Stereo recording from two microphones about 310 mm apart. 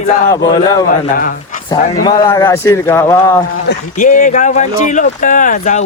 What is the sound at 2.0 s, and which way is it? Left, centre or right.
Speech, centre.